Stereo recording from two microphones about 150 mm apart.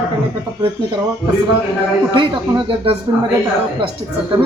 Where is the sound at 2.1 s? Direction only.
35° right (ahead or behind).